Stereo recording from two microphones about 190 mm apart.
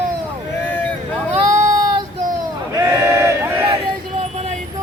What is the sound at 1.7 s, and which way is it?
Child singing, 20° right (ahead or behind).